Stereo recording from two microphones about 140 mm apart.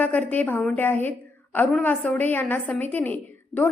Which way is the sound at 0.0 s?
10° left (ahead or behind).